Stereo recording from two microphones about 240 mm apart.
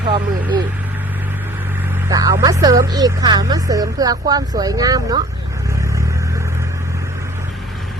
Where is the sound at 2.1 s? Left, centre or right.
Centre.